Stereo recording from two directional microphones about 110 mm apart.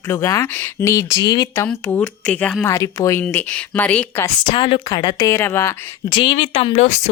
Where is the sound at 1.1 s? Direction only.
40° left (ahead or behind).